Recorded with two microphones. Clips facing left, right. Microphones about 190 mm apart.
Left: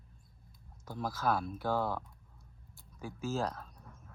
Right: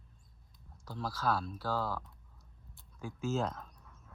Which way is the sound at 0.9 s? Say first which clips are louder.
Left 1 dB; 15° left (ahead or behind).